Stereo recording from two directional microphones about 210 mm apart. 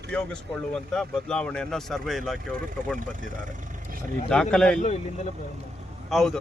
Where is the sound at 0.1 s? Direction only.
5° left (ahead or behind).